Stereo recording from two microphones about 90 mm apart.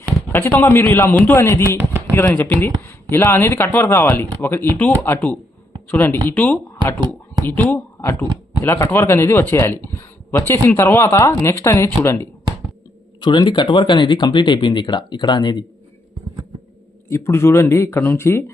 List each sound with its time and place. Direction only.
0.3 s speech: 25° left (ahead or behind)
1.8 s chopping: 25° right (ahead or behind)
2.1 s speech: 25° left (ahead or behind)
13.2 s speech: 55° left (ahead or behind)
17.1 s speech: 30° left (ahead or behind)